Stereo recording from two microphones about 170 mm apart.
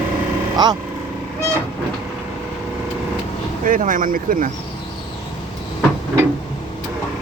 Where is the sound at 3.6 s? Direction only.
50° right (ahead or behind).